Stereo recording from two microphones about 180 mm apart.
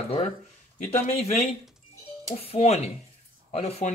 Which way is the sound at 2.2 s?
35° left (ahead or behind).